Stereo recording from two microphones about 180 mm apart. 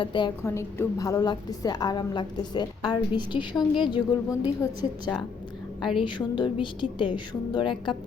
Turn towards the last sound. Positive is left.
turn(degrees=25)  # may be behind; listen again after turning